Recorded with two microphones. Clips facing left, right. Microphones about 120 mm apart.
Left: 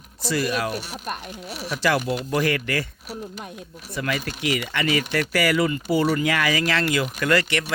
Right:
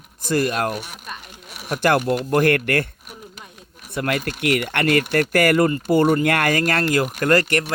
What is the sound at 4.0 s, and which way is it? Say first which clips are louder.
Speech: right 4 dB; 60° right (ahead or behind).